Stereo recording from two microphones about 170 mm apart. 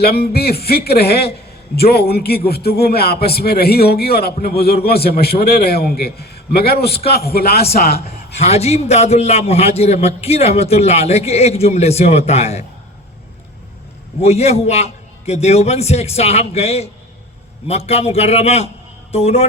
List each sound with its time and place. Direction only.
0.0 s a man's voice: 65° left (ahead or behind)
8.4 s a man's voice: 40° left (ahead or behind)
14.2 s a man's voice: 40° left (ahead or behind)